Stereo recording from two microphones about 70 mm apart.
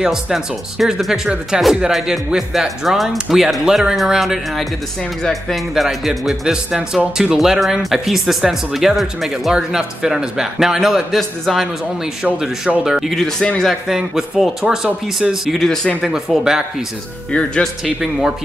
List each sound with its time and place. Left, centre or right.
0.0 s speech: centre
13.4 s speech: centre
13.7 s speech: centre
15.6 s speech: centre
16.0 s speech: centre
17.3 s speech: centre
17.8 s speech: centre